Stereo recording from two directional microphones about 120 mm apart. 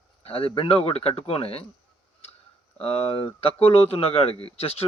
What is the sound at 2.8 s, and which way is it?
Speech, 55° left (ahead or behind).